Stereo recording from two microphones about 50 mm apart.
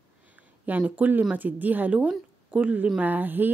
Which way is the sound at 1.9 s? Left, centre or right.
Right.